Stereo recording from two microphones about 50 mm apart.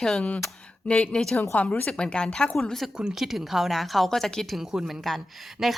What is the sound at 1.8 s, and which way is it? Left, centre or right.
Speech, centre.